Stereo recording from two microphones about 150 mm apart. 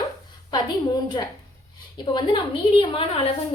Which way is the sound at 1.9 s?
30° left (ahead or behind).